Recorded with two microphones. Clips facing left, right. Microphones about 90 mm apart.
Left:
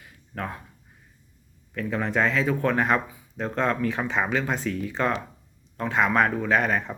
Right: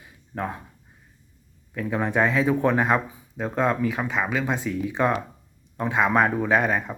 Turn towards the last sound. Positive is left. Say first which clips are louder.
# right 1 dB
turn(degrees=-15)  # may be behind; listen again after turning